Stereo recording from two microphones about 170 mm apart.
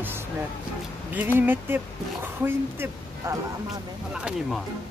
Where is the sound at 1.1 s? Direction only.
10° right (ahead or behind).